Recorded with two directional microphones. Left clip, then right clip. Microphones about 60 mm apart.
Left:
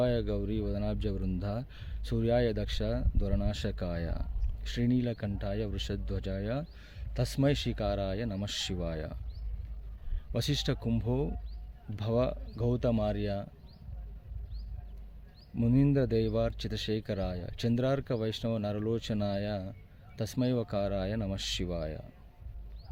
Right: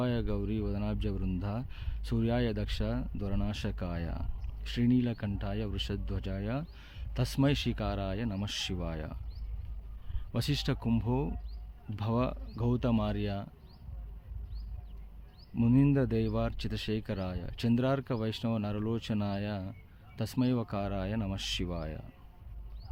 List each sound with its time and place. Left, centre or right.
0.0 s speech: right
1.4 s speech: centre
1.7 s speech: right
3.5 s speech: centre
4.6 s speech: right
8.4 s speech: centre
10.3 s speech: right
15.6 s speech: right
16.2 s speech: right
19.1 s speech: right; by 21.7 s centre
21.7 s speech: right